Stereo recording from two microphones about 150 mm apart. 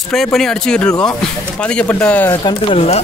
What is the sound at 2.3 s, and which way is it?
Speech, 30° left (ahead or behind).